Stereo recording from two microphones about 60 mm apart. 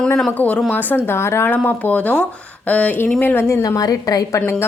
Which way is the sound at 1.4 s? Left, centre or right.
Left.